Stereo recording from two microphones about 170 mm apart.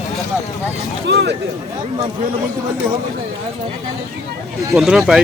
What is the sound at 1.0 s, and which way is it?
Speech, 70° right (ahead or behind).